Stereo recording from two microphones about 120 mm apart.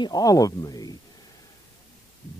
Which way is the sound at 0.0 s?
30° left (ahead or behind).